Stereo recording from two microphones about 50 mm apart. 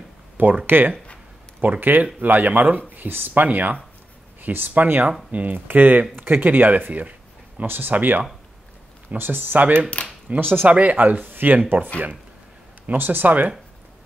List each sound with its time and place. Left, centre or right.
0.7 s speech: right
10.7 s speech: right
12.8 s speech: right